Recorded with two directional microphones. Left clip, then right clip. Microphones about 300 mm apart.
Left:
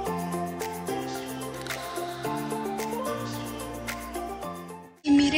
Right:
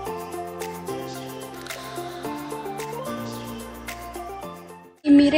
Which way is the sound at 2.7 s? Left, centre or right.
Centre.